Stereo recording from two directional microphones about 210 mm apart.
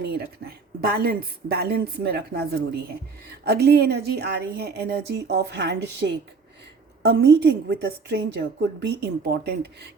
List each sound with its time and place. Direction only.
0.0 s a woman's voice: 45° right (ahead or behind)